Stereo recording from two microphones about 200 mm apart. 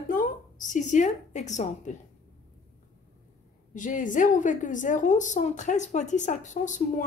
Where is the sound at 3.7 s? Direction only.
40° left (ahead or behind).